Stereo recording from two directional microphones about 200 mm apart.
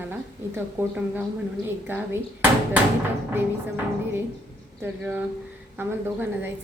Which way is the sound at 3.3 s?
10° right (ahead or behind).